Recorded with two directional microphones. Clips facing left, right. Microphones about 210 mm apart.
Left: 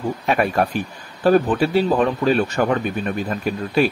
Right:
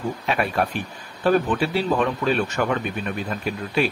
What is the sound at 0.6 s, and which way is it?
Speech, 45° left (ahead or behind).